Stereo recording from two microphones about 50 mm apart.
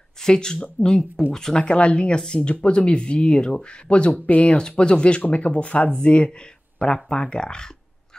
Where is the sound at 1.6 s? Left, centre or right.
Left.